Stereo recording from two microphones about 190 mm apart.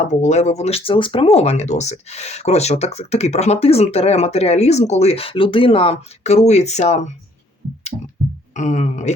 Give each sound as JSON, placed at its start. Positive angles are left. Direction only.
{"t": 0.1, "sound": "speech", "side_deg": 40}
{"t": 8.5, "sound": "speech", "side_deg": 40}